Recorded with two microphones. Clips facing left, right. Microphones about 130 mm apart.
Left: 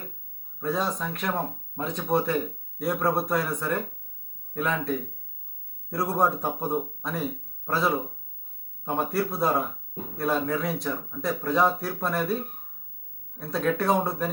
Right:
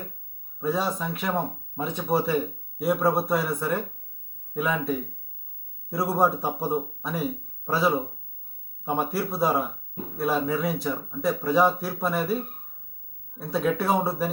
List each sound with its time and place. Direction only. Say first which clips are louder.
0.6 s speech: right 1 dB; 5° right (ahead or behind)
13.5 s speech: even; 5° right (ahead or behind)